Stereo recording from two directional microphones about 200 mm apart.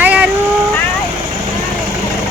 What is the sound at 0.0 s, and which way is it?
Vehicle, 5° right (ahead or behind).